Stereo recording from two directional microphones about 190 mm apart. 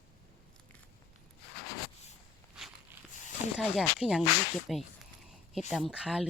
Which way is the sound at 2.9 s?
10° right (ahead or behind).